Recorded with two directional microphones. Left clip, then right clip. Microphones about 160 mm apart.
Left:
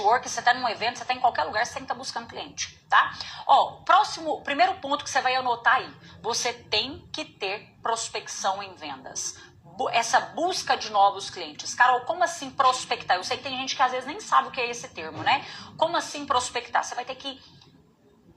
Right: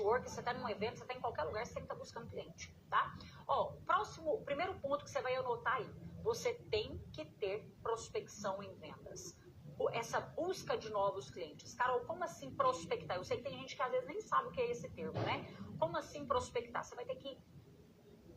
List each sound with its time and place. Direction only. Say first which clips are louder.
0.0 s a woman's voice: left 15 dB; 35° left (ahead or behind)